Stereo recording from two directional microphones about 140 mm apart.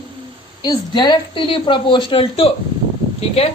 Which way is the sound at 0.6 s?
30° left (ahead or behind).